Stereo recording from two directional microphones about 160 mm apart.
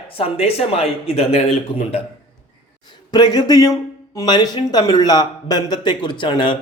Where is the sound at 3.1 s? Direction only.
25° left (ahead or behind).